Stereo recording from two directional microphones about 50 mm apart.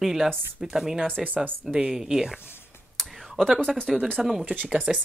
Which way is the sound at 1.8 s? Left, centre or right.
Centre.